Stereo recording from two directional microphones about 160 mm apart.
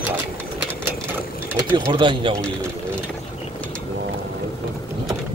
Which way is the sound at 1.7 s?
30° right (ahead or behind).